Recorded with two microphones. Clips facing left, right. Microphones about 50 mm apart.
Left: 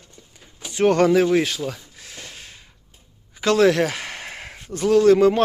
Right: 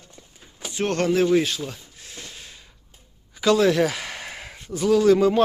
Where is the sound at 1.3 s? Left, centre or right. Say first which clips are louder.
Left 1 dB; left.